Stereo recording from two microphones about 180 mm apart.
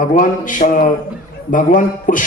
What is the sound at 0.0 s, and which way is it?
A man's voice, 45° left (ahead or behind).